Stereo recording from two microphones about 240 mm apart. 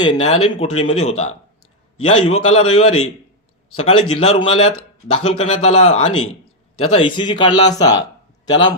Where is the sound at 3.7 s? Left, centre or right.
Left.